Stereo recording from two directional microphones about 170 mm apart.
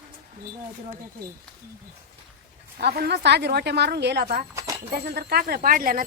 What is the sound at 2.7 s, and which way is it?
A woman's voice, 65° right (ahead or behind).